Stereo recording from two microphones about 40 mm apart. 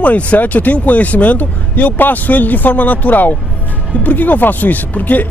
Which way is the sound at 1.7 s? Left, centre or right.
Left.